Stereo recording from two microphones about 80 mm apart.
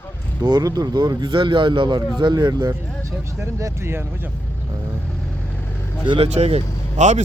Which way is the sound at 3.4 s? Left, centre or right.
Right.